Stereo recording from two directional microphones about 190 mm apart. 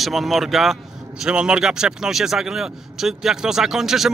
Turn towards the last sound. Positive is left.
turn(degrees=0)  # may be behind; listen again after turning